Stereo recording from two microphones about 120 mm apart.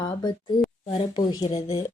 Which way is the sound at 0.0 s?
40° left (ahead or behind).